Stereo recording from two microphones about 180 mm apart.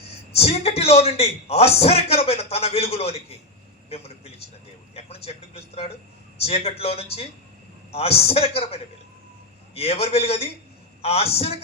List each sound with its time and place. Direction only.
0.3 s a man's voice: 35° left (ahead or behind)